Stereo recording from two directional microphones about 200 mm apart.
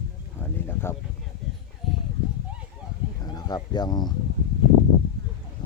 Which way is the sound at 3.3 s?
20° left (ahead or behind).